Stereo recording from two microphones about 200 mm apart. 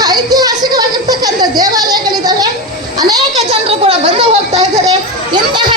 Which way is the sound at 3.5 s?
30° right (ahead or behind).